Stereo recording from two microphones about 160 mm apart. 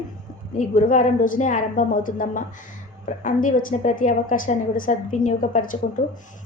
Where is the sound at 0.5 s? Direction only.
55° left (ahead or behind).